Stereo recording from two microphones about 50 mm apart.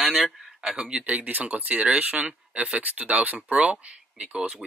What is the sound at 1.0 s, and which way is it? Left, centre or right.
Speech, right.